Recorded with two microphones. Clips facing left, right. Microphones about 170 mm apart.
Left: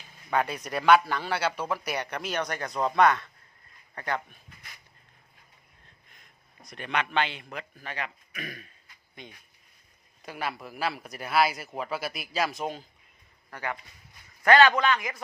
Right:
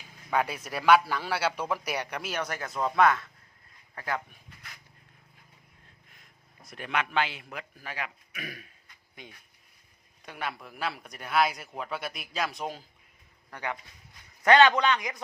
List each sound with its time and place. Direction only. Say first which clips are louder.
0.0 s a man's voice: left 1 dB; 5° right (ahead or behind)
6.7 s a man's voice: left 1 dB; 5° right (ahead or behind)
13.5 s a man's voice: left 1 dB; 15° right (ahead or behind)